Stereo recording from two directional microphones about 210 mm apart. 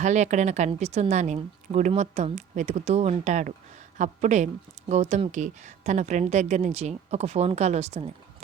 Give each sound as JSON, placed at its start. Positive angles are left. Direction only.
{"t": 0.0, "sound": "speech", "side_deg": -35}